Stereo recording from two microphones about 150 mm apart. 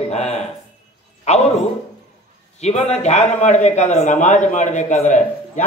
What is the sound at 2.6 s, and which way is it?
A man's voice, 45° left (ahead or behind).